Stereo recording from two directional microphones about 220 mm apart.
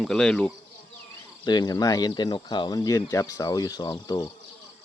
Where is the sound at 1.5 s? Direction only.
20° left (ahead or behind).